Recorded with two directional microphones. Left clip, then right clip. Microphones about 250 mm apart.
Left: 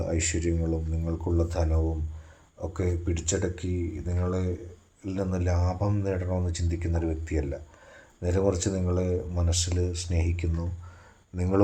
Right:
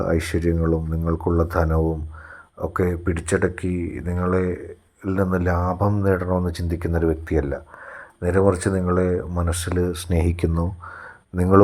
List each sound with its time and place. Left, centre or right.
0.2 s speech: right